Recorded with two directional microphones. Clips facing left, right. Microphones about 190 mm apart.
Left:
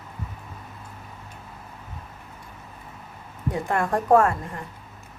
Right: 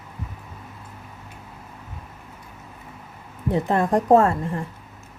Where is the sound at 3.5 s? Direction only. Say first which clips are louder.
Right 5 dB; 20° right (ahead or behind).